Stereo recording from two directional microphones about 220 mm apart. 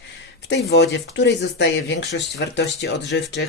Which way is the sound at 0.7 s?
50° left (ahead or behind).